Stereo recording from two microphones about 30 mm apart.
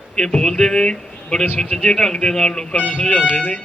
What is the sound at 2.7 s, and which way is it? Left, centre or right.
Speech, left.